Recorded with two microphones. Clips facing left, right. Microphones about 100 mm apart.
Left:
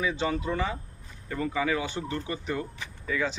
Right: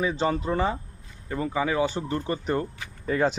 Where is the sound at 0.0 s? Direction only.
35° right (ahead or behind).